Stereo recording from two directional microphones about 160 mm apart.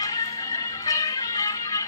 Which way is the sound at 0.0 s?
20° left (ahead or behind).